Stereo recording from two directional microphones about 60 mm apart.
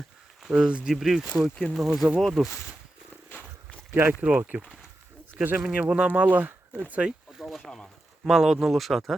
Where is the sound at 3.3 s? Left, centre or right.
Left.